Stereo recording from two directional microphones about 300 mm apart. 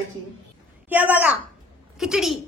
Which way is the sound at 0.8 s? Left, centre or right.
Centre.